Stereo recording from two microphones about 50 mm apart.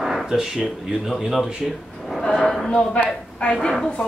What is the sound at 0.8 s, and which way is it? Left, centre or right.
A man's voice, centre.